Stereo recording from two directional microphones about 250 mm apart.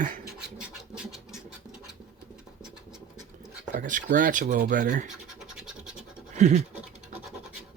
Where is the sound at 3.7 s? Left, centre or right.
Right.